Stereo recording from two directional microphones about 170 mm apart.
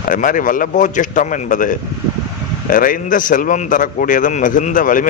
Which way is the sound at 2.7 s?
55° left (ahead or behind).